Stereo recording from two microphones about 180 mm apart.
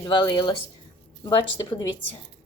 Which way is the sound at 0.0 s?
25° left (ahead or behind).